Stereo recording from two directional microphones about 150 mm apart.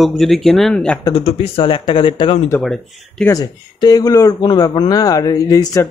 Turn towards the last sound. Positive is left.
turn(degrees=25)  # may be behind; listen again after turning